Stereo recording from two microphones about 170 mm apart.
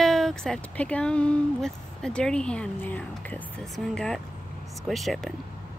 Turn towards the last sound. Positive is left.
turn(degrees=0)  # may be behind; listen again after turning